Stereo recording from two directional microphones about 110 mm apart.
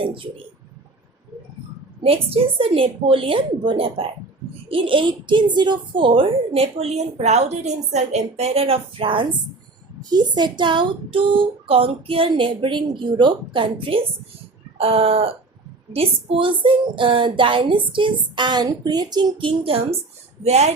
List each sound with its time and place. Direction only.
2.0 s a woman's voice: 60° right (ahead or behind)
10.0 s a woman's voice: 40° right (ahead or behind); by 20.7 s 80° right